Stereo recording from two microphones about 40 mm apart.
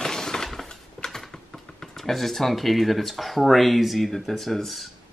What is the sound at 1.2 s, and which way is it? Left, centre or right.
Typing, centre.